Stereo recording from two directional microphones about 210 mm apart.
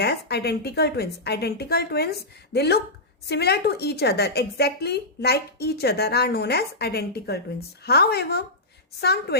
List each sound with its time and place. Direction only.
0.0 s a woman's voice: 50° left (ahead or behind)